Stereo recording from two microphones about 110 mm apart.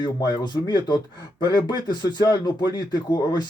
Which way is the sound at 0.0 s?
40° left (ahead or behind).